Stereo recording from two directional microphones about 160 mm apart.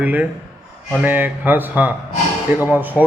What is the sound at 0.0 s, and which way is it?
Speech, 10° right (ahead or behind).